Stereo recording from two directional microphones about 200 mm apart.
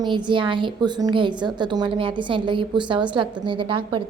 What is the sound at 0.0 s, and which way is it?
A woman's voice, 25° right (ahead or behind).